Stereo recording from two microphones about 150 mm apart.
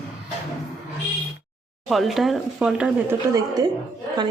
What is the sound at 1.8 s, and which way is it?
Speech, centre (ahead or behind).